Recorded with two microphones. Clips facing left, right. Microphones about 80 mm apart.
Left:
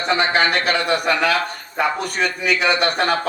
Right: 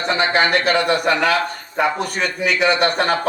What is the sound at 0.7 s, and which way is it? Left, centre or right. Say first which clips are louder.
A man's voice: right 2 dB; right.